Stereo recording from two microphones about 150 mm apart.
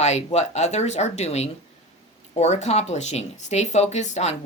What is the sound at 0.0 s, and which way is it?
Speech, 45° left (ahead or behind).